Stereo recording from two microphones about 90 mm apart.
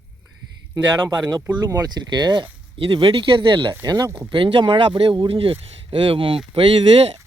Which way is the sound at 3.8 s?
50° right (ahead or behind).